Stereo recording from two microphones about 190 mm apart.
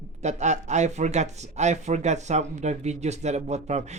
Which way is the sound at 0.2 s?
35° right (ahead or behind).